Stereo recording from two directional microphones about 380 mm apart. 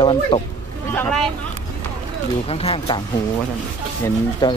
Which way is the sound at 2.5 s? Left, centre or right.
Centre.